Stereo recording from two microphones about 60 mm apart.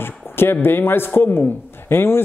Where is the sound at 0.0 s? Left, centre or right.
Left.